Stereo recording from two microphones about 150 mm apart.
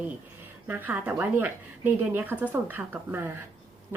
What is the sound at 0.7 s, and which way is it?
Speech, 10° right (ahead or behind).